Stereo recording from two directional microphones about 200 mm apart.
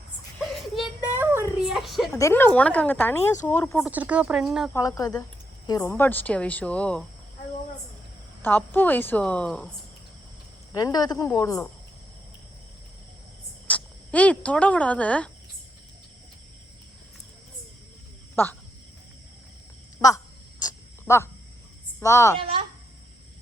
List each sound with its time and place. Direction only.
0.8 s a sound: 10° right (ahead or behind)
1.7 s a sound: centre (ahead or behind)
2.1 s speech: 15° left (ahead or behind)
3.8 s speech: 5° right (ahead or behind)
4.7 s speech: 15° left (ahead or behind)
8.4 s speech: 10° left (ahead or behind)
10.8 s speech: 20° left (ahead or behind)
13.7 s speech: 5° left (ahead or behind)
20.0 s a sound: 15° left (ahead or behind)
22.0 s speech: 15° left (ahead or behind)
22.4 s speech: 25° right (ahead or behind)